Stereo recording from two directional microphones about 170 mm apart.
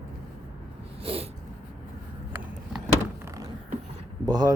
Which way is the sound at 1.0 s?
35° right (ahead or behind).